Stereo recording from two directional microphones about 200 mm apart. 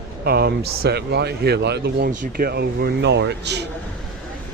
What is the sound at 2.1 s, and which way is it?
Speech, 45° right (ahead or behind).